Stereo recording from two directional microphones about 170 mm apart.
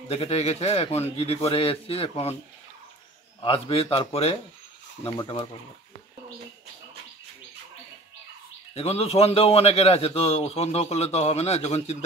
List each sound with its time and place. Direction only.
0.1 s a man's voice: 35° left (ahead or behind)
3.3 s a man's voice: 30° left (ahead or behind)
8.7 s a man's voice: 35° left (ahead or behind)